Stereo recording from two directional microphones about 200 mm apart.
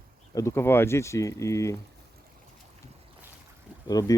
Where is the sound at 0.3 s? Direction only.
15° left (ahead or behind).